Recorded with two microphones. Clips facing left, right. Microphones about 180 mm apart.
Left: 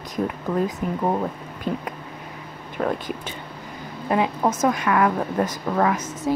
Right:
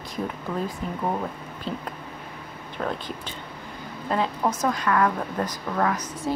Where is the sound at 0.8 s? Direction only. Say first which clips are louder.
Left 4 dB; 10° left (ahead or behind).